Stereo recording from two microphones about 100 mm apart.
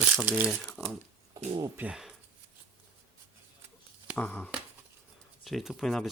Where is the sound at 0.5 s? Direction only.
5° left (ahead or behind).